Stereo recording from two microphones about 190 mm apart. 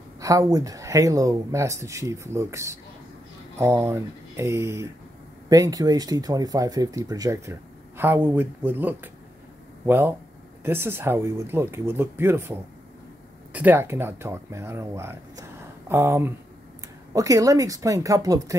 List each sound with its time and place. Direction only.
0.2 s speech: 20° right (ahead or behind)